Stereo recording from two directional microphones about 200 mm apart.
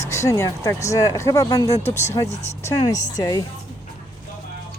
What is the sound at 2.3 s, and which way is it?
Speech, 35° left (ahead or behind).